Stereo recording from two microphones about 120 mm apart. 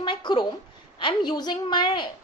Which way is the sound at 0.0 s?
40° left (ahead or behind).